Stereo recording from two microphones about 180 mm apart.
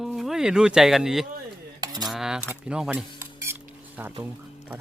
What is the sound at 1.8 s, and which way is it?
Cutlery, 20° right (ahead or behind).